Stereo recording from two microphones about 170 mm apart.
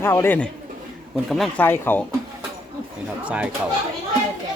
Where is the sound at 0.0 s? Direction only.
15° left (ahead or behind).